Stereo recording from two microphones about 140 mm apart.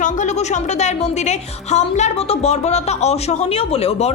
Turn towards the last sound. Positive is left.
turn(degrees=45)  # may be behind; listen again after turning